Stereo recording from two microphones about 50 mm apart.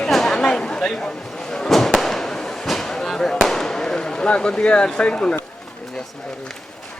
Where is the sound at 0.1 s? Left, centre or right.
Centre.